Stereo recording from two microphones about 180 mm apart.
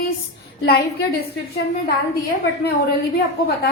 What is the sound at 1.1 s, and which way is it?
A woman's voice, 60° left (ahead or behind).